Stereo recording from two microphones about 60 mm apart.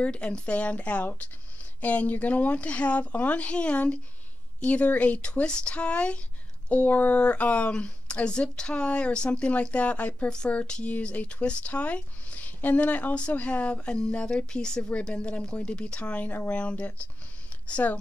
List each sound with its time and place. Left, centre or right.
0.0 s a woman's voice: centre